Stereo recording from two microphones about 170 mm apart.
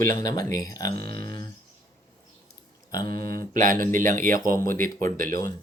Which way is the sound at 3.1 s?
60° right (ahead or behind).